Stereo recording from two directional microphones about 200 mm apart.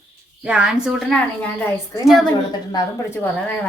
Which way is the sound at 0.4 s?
5° right (ahead or behind).